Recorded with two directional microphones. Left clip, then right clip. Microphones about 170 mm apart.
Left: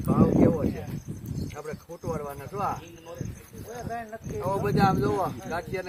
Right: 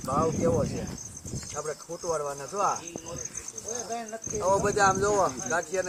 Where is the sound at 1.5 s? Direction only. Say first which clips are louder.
Right 7 dB; 10° left (ahead or behind).